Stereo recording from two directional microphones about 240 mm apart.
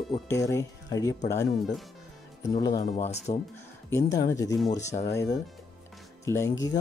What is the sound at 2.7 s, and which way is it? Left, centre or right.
Speech, left.